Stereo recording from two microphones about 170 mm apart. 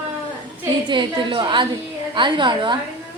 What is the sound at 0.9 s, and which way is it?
A woman's voice, 25° right (ahead or behind).